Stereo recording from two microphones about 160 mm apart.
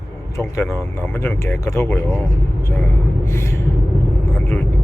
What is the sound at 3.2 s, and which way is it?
Gasp, 15° left (ahead or behind).